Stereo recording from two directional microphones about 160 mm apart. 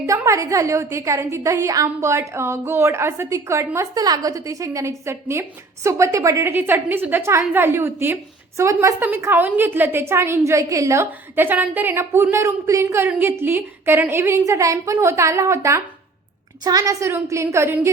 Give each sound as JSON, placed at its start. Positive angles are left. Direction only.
{"t": 0.0, "sound": "a woman's voice", "side_deg": -20}